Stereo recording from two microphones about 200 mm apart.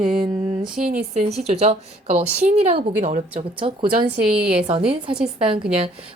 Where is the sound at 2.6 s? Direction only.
30° right (ahead or behind).